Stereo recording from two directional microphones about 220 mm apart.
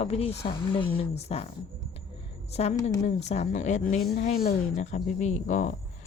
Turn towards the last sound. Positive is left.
turn(degrees=35)  # may be behind; listen again after turning